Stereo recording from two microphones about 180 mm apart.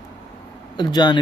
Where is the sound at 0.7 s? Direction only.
25° left (ahead or behind).